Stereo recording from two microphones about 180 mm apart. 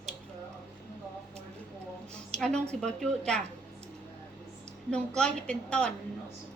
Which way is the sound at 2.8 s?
5° left (ahead or behind).